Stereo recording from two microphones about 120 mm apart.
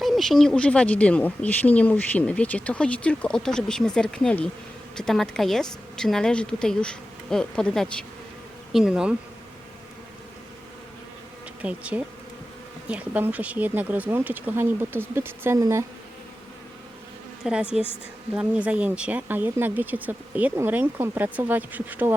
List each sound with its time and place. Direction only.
0.0 s a woman's voice: centre (ahead or behind)
8.7 s speech: 5° right (ahead or behind)
11.6 s speech: 10° right (ahead or behind)
17.4 s a woman's voice: 10° right (ahead or behind)